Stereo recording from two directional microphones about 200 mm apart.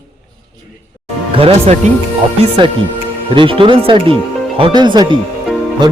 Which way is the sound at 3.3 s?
25° right (ahead or behind).